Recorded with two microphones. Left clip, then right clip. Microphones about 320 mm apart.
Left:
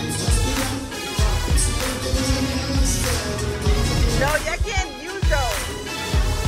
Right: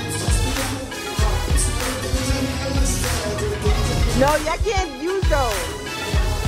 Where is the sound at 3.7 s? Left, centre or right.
Centre.